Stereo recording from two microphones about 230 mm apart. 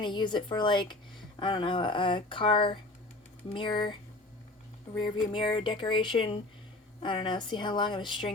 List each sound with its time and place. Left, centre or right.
0.0 s speech: centre
5.3 s speech: left